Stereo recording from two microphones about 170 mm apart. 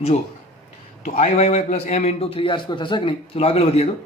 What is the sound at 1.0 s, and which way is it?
A man's voice, 40° left (ahead or behind).